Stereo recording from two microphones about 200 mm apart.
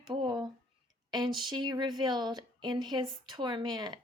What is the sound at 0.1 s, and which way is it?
Speech, 20° right (ahead or behind).